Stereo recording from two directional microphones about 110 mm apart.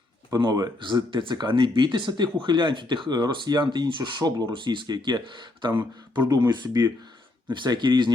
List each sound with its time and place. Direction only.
0.3 s speech: 35° right (ahead or behind)